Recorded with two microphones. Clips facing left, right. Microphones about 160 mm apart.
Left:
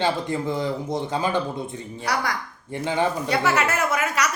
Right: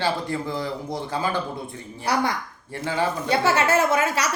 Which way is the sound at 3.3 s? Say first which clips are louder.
Right 2 dB; 30° right (ahead or behind).